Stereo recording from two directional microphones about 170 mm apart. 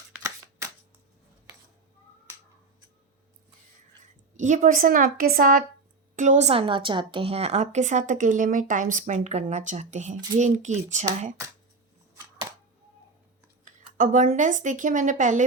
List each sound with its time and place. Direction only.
4.4 s a woman's voice: 45° right (ahead or behind)
12.1 s a sound: 20° right (ahead or behind)
13.7 s speech: 50° right (ahead or behind)